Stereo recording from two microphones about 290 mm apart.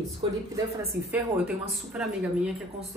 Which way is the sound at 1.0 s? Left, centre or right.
Centre.